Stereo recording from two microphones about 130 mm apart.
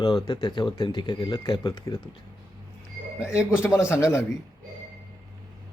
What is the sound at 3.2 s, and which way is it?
Speech, 20° left (ahead or behind).